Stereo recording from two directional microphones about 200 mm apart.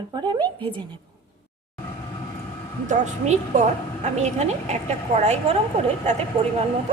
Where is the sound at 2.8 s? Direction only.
35° right (ahead or behind).